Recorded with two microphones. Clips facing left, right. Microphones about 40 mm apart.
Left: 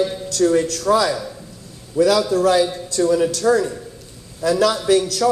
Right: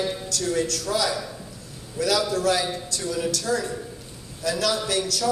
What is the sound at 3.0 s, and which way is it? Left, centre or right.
Speech, left.